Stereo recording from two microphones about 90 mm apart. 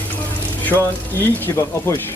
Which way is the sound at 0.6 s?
20° left (ahead or behind).